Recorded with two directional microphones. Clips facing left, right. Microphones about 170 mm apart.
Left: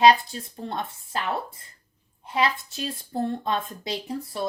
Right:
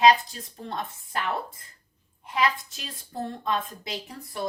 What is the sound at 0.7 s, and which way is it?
Speech, 30° left (ahead or behind).